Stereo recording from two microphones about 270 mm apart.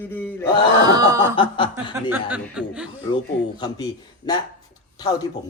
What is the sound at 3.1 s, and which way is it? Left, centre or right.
A man's voice, centre.